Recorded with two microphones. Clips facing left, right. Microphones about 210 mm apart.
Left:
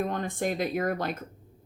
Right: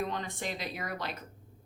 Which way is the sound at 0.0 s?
50° left (ahead or behind).